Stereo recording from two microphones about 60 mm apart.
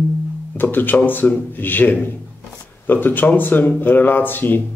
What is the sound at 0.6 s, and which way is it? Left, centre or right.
Speech, left.